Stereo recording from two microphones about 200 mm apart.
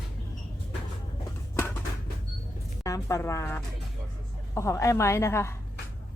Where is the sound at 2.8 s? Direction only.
15° left (ahead or behind).